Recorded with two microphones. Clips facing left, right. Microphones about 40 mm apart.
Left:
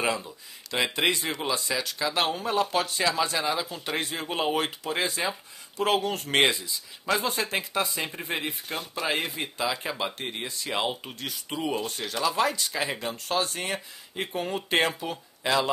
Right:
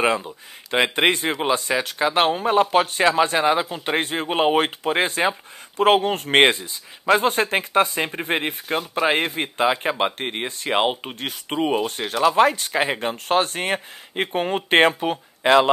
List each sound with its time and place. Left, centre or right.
0.0 s speech: right
8.6 s speech: right
9.0 s speech: right